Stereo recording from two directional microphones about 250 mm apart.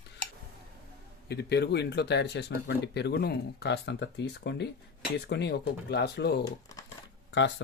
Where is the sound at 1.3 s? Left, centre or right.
Left.